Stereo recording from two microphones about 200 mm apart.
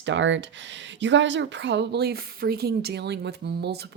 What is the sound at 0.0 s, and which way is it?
Speech, 65° right (ahead or behind).